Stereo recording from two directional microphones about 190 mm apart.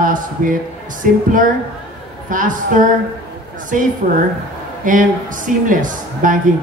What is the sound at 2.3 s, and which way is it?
A man's voice, 45° right (ahead or behind).